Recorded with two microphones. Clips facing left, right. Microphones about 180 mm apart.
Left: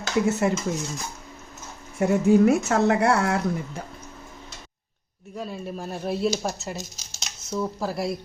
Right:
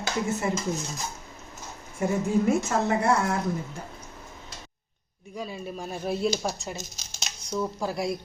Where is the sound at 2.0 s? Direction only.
75° left (ahead or behind).